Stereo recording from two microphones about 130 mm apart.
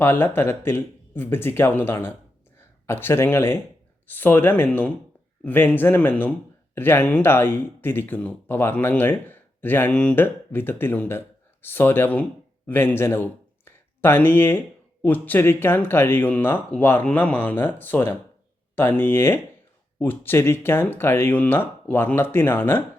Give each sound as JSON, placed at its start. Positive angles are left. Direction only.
{"t": 0.0, "sound": "speech", "side_deg": 15}
{"t": 13.7, "sound": "a sound", "side_deg": 15}
{"t": 15.0, "sound": "speech", "side_deg": 15}